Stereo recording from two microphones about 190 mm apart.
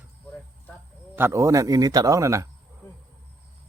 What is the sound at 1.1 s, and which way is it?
A man's voice, 15° right (ahead or behind).